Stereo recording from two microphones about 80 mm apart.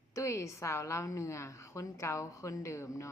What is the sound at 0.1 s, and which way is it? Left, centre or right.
A woman's voice, left.